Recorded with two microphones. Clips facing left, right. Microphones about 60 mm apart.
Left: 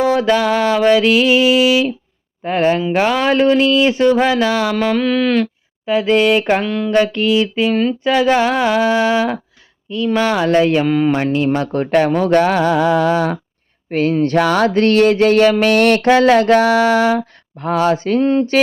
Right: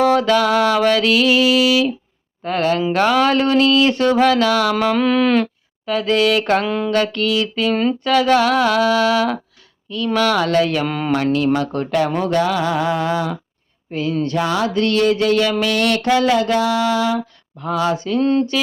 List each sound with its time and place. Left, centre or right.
0.0 s music: centre
4.7 s speech: centre
5.8 s speech: centre
6.4 s music: centre
6.7 s speech: centre
6.9 s music: centre
7.8 s speech: centre
8.0 s speech: centre
10.8 s speech: centre
11.1 s speech: left
13.9 s a sound: left
14.3 s a sound: left
14.7 s a sound: left
18.2 s music: centre